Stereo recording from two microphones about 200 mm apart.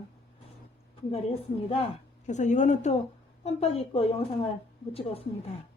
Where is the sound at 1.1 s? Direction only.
30° left (ahead or behind).